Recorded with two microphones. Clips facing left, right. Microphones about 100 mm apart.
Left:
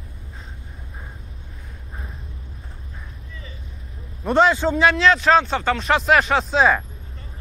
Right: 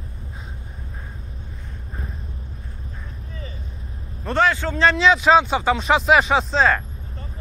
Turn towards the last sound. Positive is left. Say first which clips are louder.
# left 1 dB
turn(degrees=5)  # may be behind; listen again after turning